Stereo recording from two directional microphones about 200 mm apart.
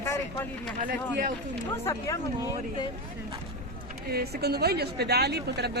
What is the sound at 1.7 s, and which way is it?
Speech, 15° left (ahead or behind).